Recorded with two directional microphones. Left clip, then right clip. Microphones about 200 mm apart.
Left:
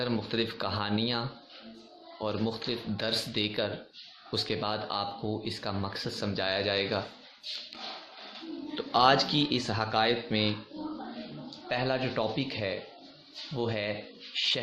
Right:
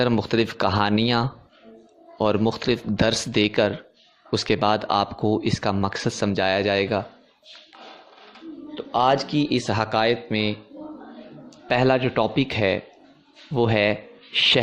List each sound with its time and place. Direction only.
0.0 s speech: 45° right (ahead or behind)
8.7 s speech: 15° right (ahead or behind); by 10.5 s 35° right (ahead or behind)
11.7 s speech: 45° right (ahead or behind)